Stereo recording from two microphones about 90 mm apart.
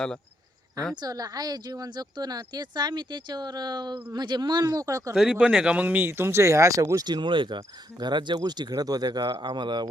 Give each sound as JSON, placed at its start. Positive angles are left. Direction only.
{"t": 1.0, "sound": "speech", "side_deg": -45}
{"t": 5.1, "sound": "speech", "side_deg": -10}